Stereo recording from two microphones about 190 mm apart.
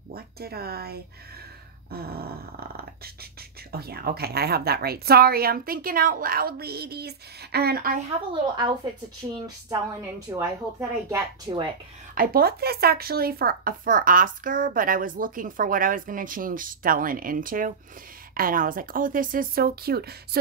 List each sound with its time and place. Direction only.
0.1 s speech: 55° right (ahead or behind)
9.2 s a woman's voice: 20° right (ahead or behind)
12.2 s speech: 50° right (ahead or behind)